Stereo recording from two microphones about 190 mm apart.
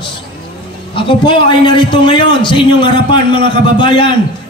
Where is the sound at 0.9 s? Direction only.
25° left (ahead or behind).